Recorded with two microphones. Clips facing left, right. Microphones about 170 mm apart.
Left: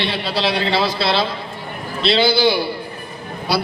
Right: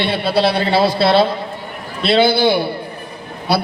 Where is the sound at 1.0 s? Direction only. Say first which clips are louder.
Right 6 dB; 55° right (ahead or behind).